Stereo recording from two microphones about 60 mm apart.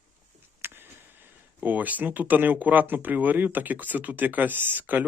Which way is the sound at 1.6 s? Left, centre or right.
Right.